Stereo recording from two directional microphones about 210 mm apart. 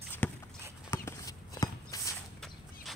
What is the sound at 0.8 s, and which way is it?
Clip-clop, 15° left (ahead or behind).